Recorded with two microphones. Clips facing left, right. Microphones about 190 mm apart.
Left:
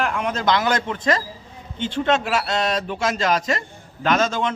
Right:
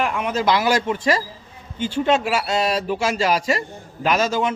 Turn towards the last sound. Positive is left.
turn(degrees=-10)  # may be behind; listen again after turning